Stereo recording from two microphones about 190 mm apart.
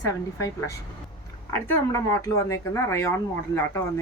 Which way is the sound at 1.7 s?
15° left (ahead or behind).